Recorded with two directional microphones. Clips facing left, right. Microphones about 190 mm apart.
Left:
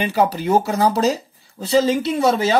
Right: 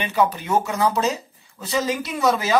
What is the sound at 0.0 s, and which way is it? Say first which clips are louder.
Speech: left 3 dB; 35° left (ahead or behind).